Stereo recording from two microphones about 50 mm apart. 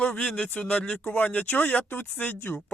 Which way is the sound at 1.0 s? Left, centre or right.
Left.